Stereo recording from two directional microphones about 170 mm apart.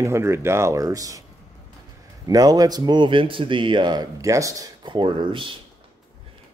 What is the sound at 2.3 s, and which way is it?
Speech, 20° right (ahead or behind).